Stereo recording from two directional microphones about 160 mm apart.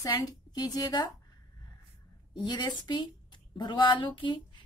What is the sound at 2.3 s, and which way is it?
A woman's voice, 30° left (ahead or behind).